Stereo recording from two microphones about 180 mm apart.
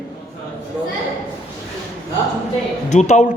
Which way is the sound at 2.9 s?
40° left (ahead or behind).